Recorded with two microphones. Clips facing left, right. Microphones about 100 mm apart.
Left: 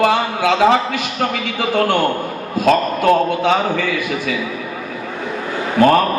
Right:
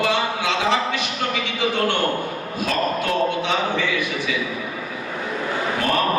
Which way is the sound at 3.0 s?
45° left (ahead or behind).